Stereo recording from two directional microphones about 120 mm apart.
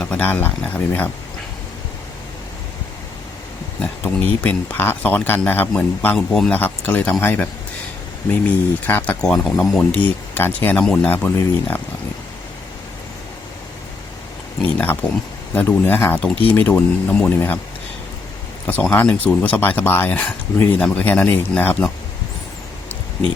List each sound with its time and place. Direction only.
0.0 s speech: 10° left (ahead or behind)
3.8 s speech: 10° left (ahead or behind)
6.1 s speech: 5° left (ahead or behind)
6.6 s speech: 15° left (ahead or behind)
14.6 s speech: 15° left (ahead or behind)
18.6 s speech: 15° left (ahead or behind)